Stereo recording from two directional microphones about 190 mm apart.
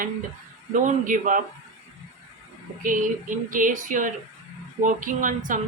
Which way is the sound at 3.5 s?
45° right (ahead or behind).